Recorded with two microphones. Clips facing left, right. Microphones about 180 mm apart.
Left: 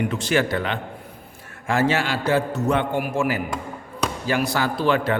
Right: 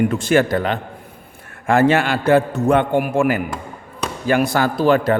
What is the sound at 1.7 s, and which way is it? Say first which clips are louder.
A man's voice: right 6 dB; 55° right (ahead or behind).